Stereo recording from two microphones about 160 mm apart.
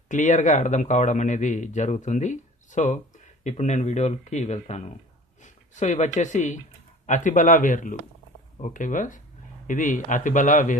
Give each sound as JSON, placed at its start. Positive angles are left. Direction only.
{"t": 0.1, "sound": "a man's voice", "side_deg": 50}